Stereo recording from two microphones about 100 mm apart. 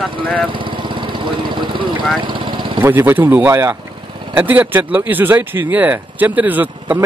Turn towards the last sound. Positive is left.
turn(degrees=-20)  # may be behind; listen again after turning